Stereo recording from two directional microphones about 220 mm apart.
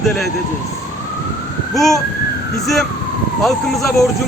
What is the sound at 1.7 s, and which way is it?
Speech, centre (ahead or behind).